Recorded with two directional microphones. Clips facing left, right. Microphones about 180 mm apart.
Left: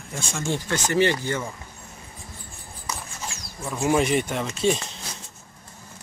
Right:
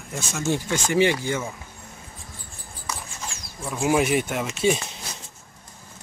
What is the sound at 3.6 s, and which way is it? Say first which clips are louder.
Speech: even; centre (ahead or behind).